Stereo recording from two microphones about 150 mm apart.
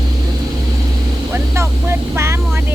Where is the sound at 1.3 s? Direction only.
20° right (ahead or behind).